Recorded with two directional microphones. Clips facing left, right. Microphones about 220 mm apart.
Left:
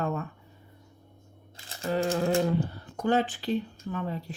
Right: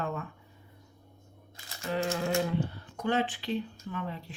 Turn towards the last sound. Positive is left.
turn(degrees=40)  # may be behind; listen again after turning